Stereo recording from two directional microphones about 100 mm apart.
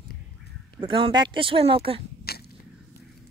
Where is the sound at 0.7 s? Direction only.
60° right (ahead or behind).